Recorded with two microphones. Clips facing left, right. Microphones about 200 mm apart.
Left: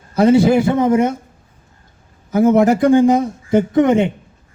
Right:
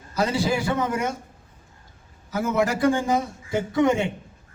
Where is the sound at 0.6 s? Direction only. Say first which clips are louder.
Left 10 dB; 20° left (ahead or behind).